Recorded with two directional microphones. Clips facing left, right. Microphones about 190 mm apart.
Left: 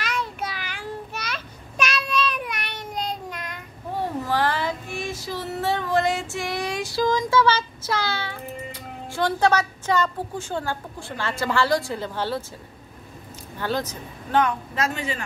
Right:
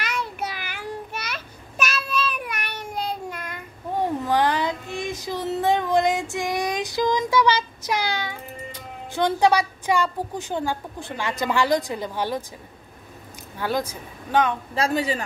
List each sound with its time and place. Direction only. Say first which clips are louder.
0.0 s a sound: even; 10° right (ahead or behind)
4.0 s child singing: right 3 dB; 15° right (ahead or behind)
9.1 s a woman's voice: right 2 dB; 15° right (ahead or behind)
13.6 s a woman's voice: right 1 dB; 10° right (ahead or behind)
14.8 s speech: right 5 dB; 35° right (ahead or behind)